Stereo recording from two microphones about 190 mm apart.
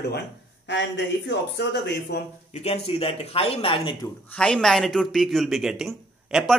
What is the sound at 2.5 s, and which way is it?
A man's voice, 35° left (ahead or behind).